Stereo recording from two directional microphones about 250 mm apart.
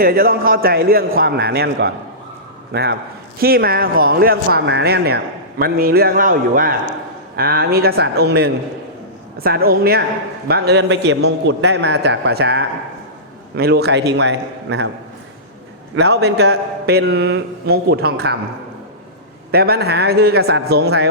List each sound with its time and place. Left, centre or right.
0.0 s a man's voice: right
16.0 s a man's voice: right
19.5 s a man's voice: right